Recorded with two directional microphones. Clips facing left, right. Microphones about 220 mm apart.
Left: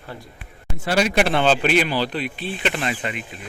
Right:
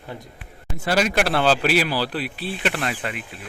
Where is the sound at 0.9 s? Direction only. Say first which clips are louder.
Left 2 dB; centre (ahead or behind).